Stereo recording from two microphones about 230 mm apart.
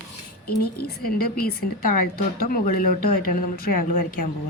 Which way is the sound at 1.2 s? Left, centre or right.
Left.